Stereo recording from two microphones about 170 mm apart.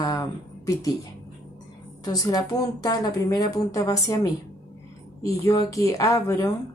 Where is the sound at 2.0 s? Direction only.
20° left (ahead or behind).